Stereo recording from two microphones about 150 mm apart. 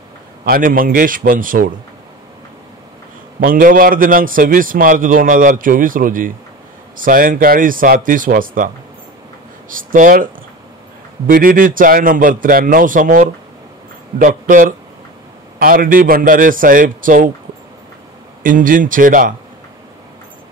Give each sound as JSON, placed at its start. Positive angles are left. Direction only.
{"t": 0.5, "sound": "speech", "side_deg": -70}
{"t": 3.3, "sound": "a man's voice", "side_deg": -65}
{"t": 9.7, "sound": "a man's voice", "side_deg": -65}
{"t": 18.4, "sound": "a man's voice", "side_deg": -65}